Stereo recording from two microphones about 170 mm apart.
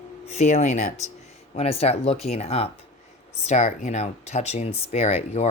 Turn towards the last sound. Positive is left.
turn(degrees=40)  # may be behind; listen again after turning